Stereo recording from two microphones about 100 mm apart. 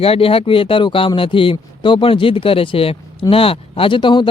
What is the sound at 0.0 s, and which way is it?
Speech, 70° left (ahead or behind).